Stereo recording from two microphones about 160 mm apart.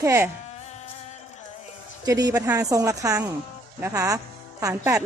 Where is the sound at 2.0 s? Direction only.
20° right (ahead or behind).